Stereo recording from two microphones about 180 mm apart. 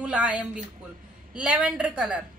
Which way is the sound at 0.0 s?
5° right (ahead or behind).